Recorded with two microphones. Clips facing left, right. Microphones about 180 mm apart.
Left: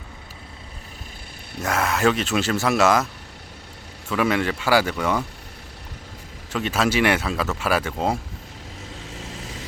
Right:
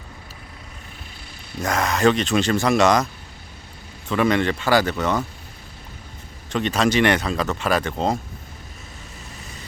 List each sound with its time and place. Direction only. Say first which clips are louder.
1.5 s speech: right 1 dB; 5° left (ahead or behind)
4.1 s speech: right 2 dB; 5° left (ahead or behind)
6.5 s speech: right 2 dB; 5° left (ahead or behind)
9.1 s vehicle: left 6 dB; 90° left